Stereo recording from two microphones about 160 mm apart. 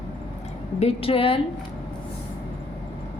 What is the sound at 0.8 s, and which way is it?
Speech, 35° left (ahead or behind).